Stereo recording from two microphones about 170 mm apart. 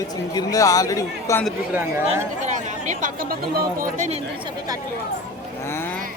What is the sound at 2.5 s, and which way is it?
Speech, 45° right (ahead or behind).